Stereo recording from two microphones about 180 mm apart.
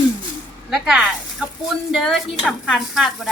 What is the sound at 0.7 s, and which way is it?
Speech, centre (ahead or behind).